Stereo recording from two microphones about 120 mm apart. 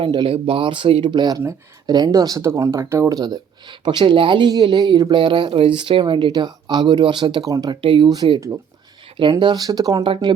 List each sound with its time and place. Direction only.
0.0 s speech: 45° right (ahead or behind)
7.8 s speech: 45° right (ahead or behind)
9.4 s speech: 35° right (ahead or behind)
10.0 s speech: 45° right (ahead or behind)